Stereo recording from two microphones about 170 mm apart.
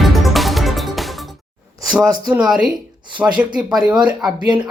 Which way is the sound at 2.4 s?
5° right (ahead or behind).